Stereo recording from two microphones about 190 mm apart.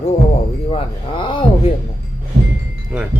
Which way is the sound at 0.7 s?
25° left (ahead or behind).